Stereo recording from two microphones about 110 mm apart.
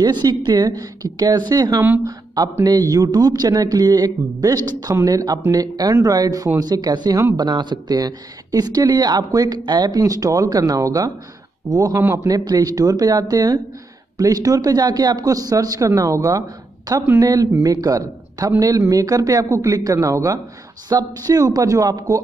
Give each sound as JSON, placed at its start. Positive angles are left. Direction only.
{"t": 0.0, "sound": "a man's voice", "side_deg": -40}
{"t": 11.9, "sound": "a man's voice", "side_deg": -20}
{"t": 12.3, "sound": "a man's voice", "side_deg": -35}